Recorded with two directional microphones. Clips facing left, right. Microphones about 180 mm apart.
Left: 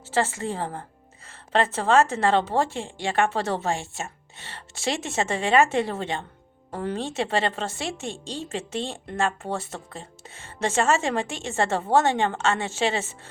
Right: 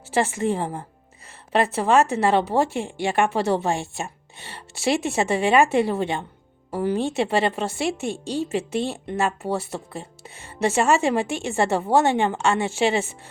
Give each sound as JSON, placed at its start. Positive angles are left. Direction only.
{"t": 0.0, "sound": "speech", "side_deg": -15}